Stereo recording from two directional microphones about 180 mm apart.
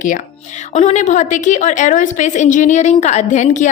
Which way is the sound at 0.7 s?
40° left (ahead or behind).